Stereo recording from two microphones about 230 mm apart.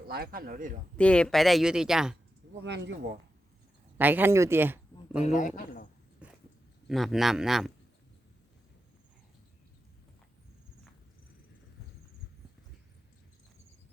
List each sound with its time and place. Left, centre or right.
0.1 s speech: right
0.9 s speech: centre
2.6 s speech: right
3.9 s speech: centre
5.2 s a man's voice: left
6.2 s a sound: centre
6.8 s speech: centre